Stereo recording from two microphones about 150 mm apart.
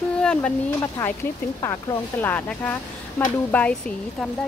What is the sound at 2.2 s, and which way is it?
Speech, 10° left (ahead or behind).